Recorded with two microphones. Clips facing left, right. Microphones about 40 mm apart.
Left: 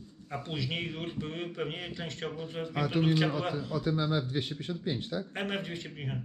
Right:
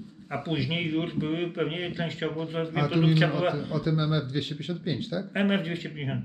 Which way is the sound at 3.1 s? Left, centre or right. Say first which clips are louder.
Right 5 dB; right.